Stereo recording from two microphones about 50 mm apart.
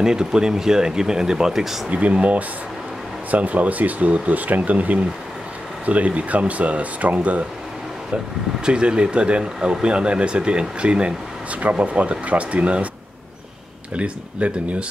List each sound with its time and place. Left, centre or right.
0.0 s speech: centre
1.9 s speech: right
8.6 s speech: centre
13.9 s speech: right